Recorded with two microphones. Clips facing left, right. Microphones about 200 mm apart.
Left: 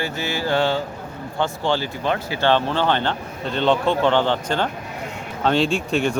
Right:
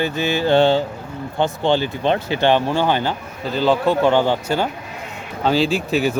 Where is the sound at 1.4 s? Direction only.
20° right (ahead or behind).